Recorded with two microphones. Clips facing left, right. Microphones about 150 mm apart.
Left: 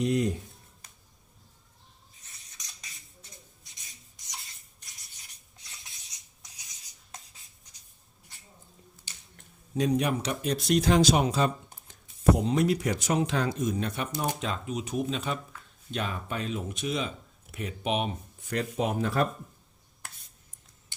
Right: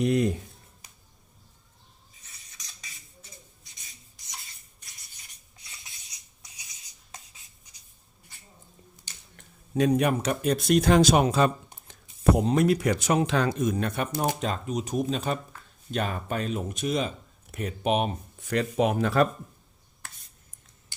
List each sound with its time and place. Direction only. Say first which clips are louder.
0.0 s speech: right 3 dB; 65° right (ahead or behind)
2.2 s a sound: right 1 dB; centre (ahead or behind)
9.7 s speech: right 4 dB; 60° right (ahead or behind)
12.4 s speech: right 3 dB; 50° right (ahead or behind)
14.7 s speech: right 2 dB; 40° right (ahead or behind)
18.3 s a sound: right 5 dB; 85° right
18.8 s speech: right 5 dB; 70° right (ahead or behind)